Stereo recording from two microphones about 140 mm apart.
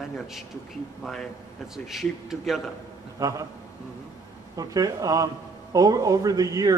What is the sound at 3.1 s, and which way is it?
Speech, 25° right (ahead or behind).